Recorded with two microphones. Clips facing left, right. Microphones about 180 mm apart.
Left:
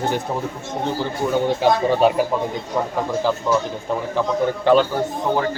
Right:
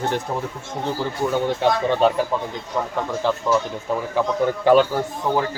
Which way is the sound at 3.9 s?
5° right (ahead or behind).